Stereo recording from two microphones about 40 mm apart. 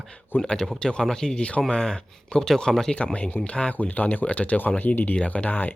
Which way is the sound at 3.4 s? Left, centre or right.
Left.